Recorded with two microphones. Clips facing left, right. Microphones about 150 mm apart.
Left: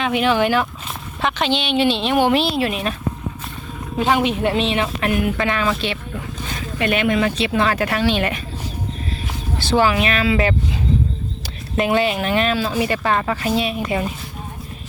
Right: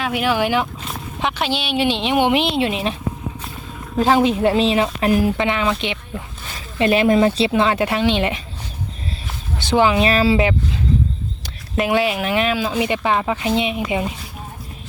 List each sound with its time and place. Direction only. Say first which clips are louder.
0.0 s speech: left 2 dB; 5° right (ahead or behind); by 2.9 s 25° right (ahead or behind)
3.9 s speech: right 3 dB; 35° right (ahead or behind)
5.4 s speech: right 1 dB; 20° right (ahead or behind)
6.7 s speech: right 4 dB; 30° right (ahead or behind)
9.6 s speech: right 1 dB; 15° right (ahead or behind)
10.0 s speech: right 3 dB; 30° right (ahead or behind)
11.8 s speech: even; 5° right (ahead or behind)